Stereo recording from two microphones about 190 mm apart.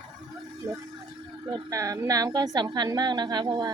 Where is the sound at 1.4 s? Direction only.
20° right (ahead or behind).